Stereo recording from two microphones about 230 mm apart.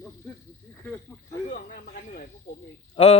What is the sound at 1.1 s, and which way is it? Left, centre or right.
Snake, centre.